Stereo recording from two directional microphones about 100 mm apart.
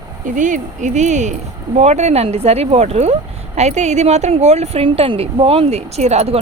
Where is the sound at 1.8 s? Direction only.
90° right.